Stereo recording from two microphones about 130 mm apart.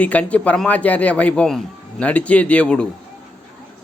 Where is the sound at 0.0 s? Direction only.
10° left (ahead or behind).